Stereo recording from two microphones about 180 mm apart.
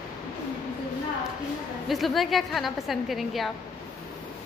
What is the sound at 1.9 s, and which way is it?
A woman's voice, centre (ahead or behind).